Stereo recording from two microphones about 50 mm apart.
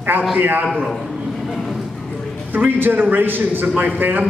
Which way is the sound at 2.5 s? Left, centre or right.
Right.